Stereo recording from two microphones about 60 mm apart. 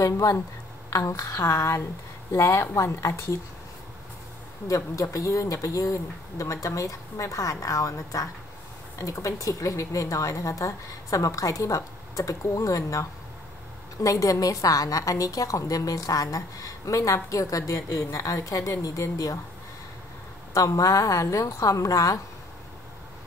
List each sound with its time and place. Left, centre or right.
0.0 s a woman's voice: left
4.6 s speech: left
14.0 s a woman's voice: left
20.5 s speech: left